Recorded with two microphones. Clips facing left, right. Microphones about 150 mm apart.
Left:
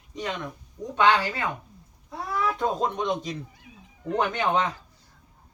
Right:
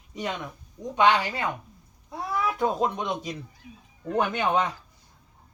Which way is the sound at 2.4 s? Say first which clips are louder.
Right 1 dB; 5° right (ahead or behind).